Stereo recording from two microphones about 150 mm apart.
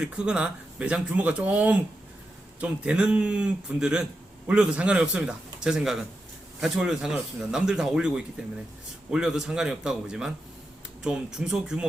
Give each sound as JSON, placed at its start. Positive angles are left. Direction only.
{"t": 0.0, "sound": "speech", "side_deg": -5}